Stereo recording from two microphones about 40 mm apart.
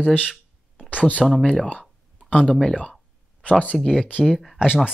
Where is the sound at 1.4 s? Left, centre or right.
Left.